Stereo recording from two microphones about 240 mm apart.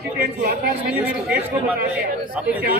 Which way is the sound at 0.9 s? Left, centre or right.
Centre.